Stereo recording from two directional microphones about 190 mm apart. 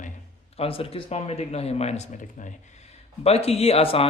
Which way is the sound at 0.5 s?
30° left (ahead or behind).